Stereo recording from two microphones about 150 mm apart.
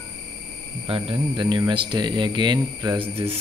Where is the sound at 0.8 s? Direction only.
35° right (ahead or behind).